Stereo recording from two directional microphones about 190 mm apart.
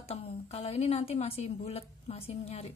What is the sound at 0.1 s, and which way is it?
A woman's voice, 30° left (ahead or behind).